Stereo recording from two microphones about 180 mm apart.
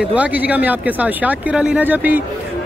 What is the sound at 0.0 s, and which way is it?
Speech, 10° right (ahead or behind).